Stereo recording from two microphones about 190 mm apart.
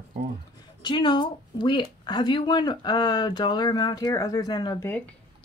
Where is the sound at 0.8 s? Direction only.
25° left (ahead or behind).